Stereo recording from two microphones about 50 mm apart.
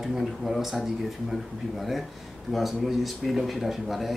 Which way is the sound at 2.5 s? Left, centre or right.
Centre.